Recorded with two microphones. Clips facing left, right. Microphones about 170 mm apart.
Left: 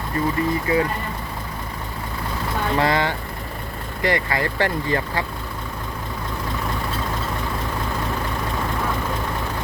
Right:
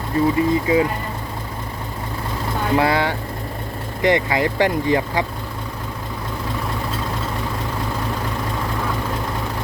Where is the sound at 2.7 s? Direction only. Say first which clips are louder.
Right 3 dB; 10° right (ahead or behind).